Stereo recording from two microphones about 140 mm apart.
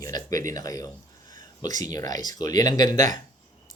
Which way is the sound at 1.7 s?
65° right (ahead or behind).